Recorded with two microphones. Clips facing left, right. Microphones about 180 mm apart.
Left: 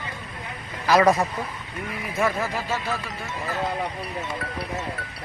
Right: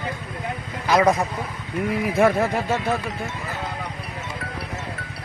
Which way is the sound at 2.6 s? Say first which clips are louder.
Right 5 dB; 60° right (ahead or behind).